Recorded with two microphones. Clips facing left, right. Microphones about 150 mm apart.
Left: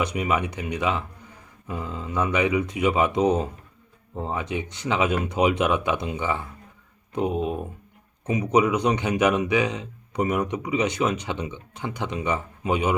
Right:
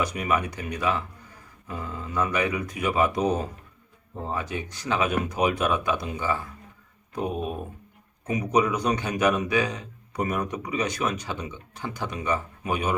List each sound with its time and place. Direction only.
0.0 s speech: 20° left (ahead or behind)